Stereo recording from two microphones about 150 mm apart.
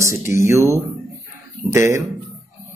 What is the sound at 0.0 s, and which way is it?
Speech, 20° right (ahead or behind).